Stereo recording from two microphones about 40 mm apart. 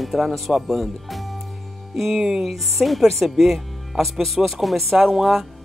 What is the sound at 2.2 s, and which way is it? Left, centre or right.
Speech, centre.